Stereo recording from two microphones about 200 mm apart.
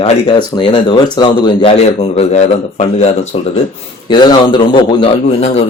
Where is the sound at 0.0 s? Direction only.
30° left (ahead or behind).